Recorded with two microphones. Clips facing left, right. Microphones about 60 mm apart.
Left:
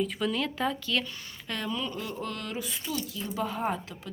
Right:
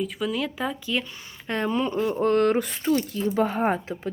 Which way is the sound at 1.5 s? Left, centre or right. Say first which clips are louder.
Right 8 dB; right.